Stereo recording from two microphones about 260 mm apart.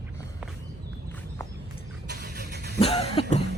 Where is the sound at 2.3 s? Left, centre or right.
Right.